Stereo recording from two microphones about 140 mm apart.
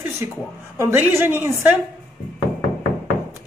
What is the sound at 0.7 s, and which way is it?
Speech, 15° right (ahead or behind).